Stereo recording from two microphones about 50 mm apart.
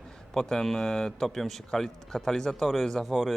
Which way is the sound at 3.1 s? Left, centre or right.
Centre.